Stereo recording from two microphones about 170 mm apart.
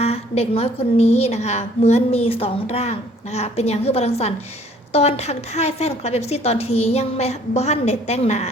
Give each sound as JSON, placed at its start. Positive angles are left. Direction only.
{"t": 0.0, "sound": "a woman's voice", "side_deg": 35}